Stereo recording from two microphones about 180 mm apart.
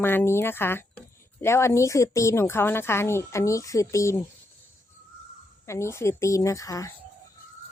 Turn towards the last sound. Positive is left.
turn(degrees=20)  # may be behind; listen again after turning